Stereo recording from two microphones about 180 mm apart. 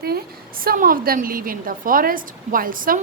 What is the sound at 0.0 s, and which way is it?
A woman's voice, 60° right (ahead or behind).